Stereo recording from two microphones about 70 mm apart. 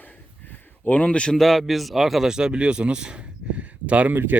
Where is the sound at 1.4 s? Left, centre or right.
Centre.